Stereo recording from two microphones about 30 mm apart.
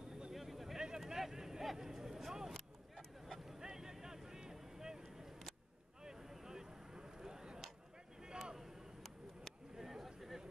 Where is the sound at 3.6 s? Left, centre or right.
Centre.